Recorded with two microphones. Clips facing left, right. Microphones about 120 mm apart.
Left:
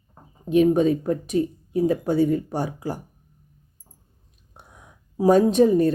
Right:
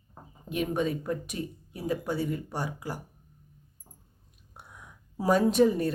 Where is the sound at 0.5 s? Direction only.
35° left (ahead or behind).